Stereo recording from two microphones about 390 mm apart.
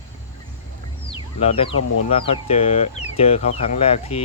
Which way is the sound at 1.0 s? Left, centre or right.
Centre.